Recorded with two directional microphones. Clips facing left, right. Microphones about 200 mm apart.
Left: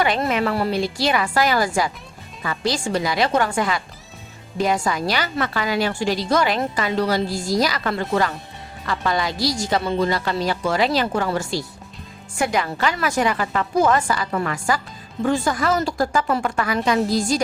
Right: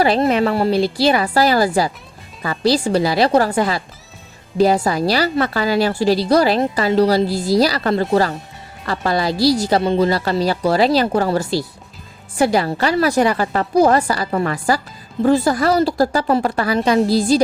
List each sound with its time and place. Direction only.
0.0 s a woman's voice: 35° right (ahead or behind)